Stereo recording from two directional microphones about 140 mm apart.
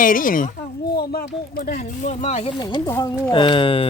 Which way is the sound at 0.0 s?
80° left.